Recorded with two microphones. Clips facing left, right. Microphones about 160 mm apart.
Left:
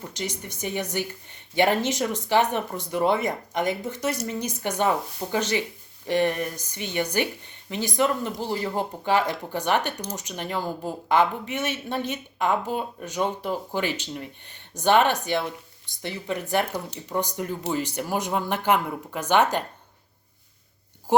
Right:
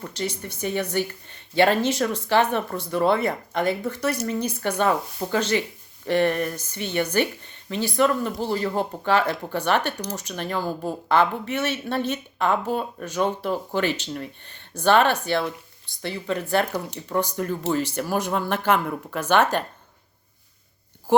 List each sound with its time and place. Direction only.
0.0 s speech: 15° left (ahead or behind)